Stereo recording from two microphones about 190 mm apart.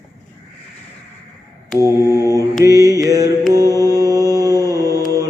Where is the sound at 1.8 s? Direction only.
15° right (ahead or behind).